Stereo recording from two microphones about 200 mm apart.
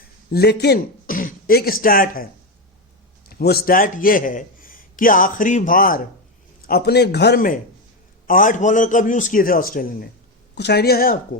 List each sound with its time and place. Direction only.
0.3 s speech: 55° left (ahead or behind)
3.2 s a man's voice: 50° left (ahead or behind)
10.5 s a man's voice: 55° left (ahead or behind)